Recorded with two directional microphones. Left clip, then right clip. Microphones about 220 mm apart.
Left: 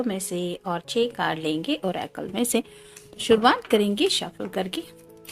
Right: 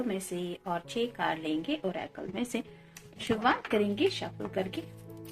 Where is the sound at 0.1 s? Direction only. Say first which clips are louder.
Left 6 dB; 55° left (ahead or behind).